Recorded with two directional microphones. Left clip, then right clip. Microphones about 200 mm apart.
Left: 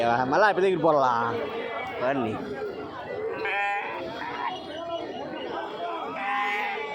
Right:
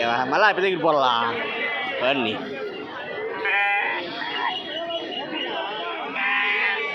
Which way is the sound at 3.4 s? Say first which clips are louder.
Right 7 dB; 30° right (ahead or behind).